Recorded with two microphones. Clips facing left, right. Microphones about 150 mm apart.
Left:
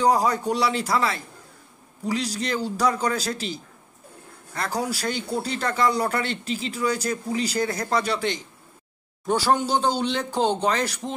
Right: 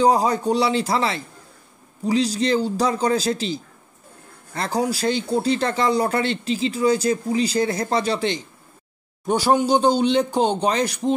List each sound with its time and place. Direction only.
0.0 s speech: 25° right (ahead or behind)
4.6 s speech: 25° right (ahead or behind)